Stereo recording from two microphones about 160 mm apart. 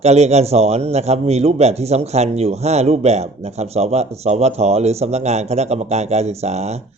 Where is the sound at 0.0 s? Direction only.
45° right (ahead or behind).